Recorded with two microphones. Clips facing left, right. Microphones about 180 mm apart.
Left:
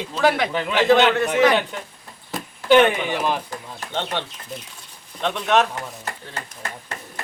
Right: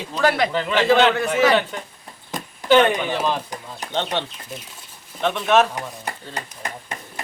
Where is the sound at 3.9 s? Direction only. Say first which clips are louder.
Right 2 dB; 15° right (ahead or behind).